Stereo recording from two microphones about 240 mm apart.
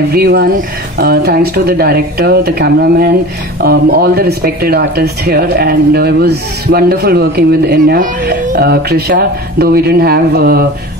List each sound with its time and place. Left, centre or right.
0.1 s speech: right